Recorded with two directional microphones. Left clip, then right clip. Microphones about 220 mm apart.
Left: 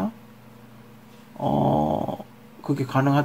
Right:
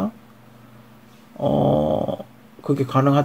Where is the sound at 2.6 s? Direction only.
35° right (ahead or behind).